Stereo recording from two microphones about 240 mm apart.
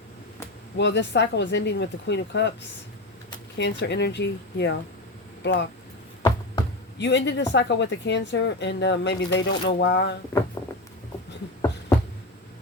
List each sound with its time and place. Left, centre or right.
0.8 s speech: left
7.0 s speech: left